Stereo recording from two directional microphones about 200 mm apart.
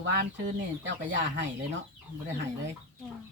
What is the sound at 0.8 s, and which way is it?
Speech, 60° right (ahead or behind).